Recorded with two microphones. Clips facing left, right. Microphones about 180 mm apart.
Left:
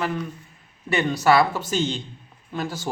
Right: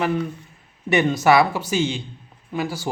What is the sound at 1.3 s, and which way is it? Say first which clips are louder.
A man's voice: even; 10° right (ahead or behind).